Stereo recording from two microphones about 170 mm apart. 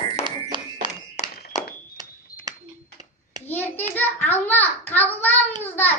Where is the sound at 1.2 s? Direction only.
40° left (ahead or behind).